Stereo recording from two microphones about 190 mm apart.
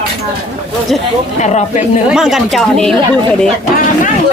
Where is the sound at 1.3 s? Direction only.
40° left (ahead or behind).